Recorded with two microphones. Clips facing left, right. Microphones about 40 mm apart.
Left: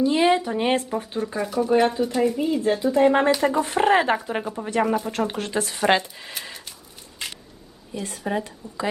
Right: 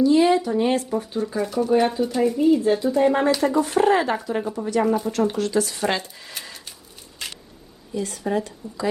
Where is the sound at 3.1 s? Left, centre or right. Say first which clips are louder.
Even; left.